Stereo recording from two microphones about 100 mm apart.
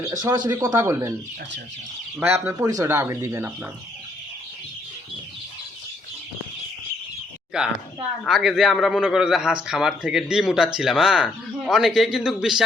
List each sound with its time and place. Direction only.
0.0 s speech: 35° right (ahead or behind)
2.2 s speech: 20° right (ahead or behind)
7.5 s a man's voice: 5° right (ahead or behind)